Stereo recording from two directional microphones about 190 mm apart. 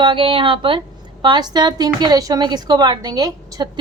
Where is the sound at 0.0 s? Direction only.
25° right (ahead or behind).